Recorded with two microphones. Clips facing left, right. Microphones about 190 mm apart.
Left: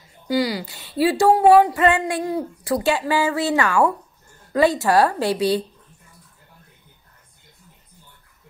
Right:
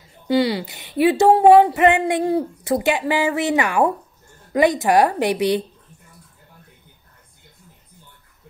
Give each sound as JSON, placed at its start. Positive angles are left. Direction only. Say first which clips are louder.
{"t": 0.3, "sound": "a woman's voice", "louder": "right 3 dB", "side_deg": -25}